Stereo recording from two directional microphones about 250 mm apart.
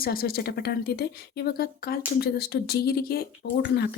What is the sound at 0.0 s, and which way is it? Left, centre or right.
A woman's voice, left.